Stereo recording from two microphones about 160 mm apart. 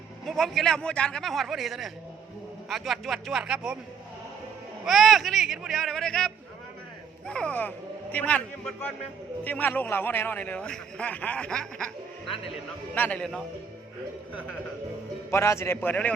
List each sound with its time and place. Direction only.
0.3 s speech: centre (ahead or behind)
4.9 s a man's voice: centre (ahead or behind)
12.9 s a man's voice: 10° left (ahead or behind)
15.3 s a man's voice: 15° left (ahead or behind)